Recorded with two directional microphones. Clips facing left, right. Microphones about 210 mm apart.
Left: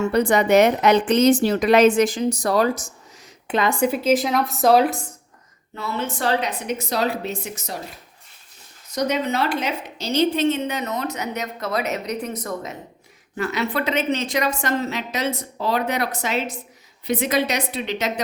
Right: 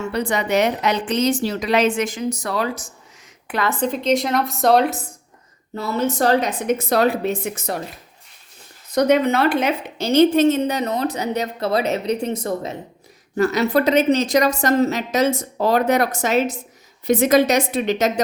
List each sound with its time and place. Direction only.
0.1 s a woman's voice: 50° left (ahead or behind)
3.4 s a woman's voice: 20° left (ahead or behind); by 5.0 s centre (ahead or behind)
5.7 s a woman's voice: 40° right (ahead or behind); by 7.8 s 55° right (ahead or behind)
8.9 s a woman's voice: 55° right (ahead or behind); by 12.7 s 30° right (ahead or behind)
13.3 s a woman's voice: 40° right (ahead or behind)